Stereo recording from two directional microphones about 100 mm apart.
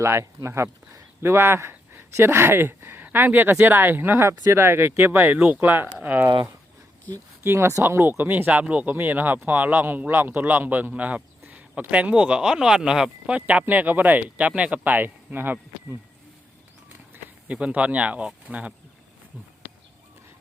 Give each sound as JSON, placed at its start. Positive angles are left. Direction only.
{"t": 0.0, "sound": "speech", "side_deg": -25}
{"t": 7.4, "sound": "speech", "side_deg": -25}
{"t": 17.5, "sound": "speech", "side_deg": -10}